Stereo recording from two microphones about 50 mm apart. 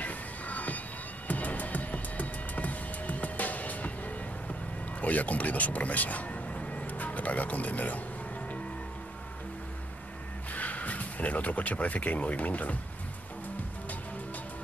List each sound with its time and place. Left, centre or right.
0.0 s music: left
5.0 s speech: left
10.5 s speech: left